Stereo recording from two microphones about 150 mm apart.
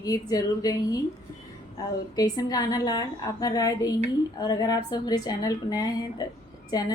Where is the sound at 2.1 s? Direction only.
25° left (ahead or behind).